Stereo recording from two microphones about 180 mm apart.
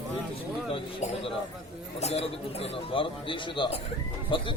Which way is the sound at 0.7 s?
30° left (ahead or behind).